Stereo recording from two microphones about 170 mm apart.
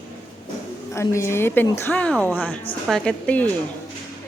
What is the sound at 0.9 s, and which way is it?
A woman's voice, 15° left (ahead or behind).